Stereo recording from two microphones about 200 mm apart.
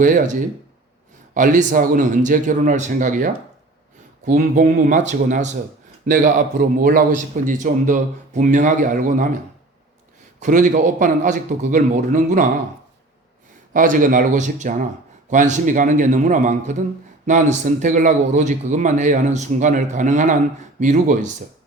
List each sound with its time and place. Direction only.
0.0 s a man's voice: 40° right (ahead or behind)
10.4 s a man's voice: 40° right (ahead or behind)
13.7 s a man's voice: 40° right (ahead or behind)